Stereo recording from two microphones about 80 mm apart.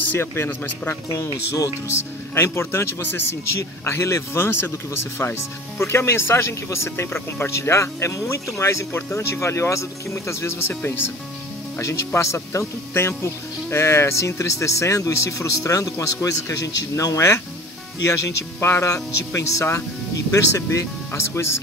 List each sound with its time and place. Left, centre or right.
0.2 s speech: left